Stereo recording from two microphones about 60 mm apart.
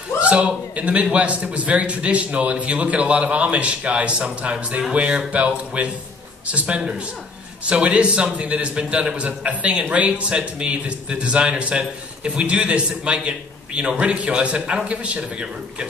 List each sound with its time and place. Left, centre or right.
0.2 s a man's voice: centre